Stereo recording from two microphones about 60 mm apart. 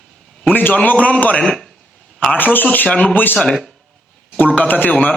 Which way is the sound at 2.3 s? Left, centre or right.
Left.